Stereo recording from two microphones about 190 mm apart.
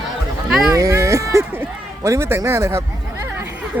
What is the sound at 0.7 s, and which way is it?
Speech, 15° right (ahead or behind).